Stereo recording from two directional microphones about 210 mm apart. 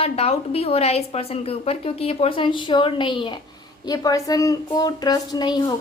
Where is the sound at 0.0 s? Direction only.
30° left (ahead or behind).